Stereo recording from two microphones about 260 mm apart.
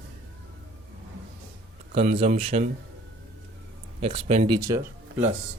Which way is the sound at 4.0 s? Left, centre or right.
Right.